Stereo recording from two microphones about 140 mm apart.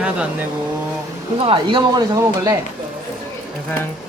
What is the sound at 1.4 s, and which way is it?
Speech, 40° right (ahead or behind).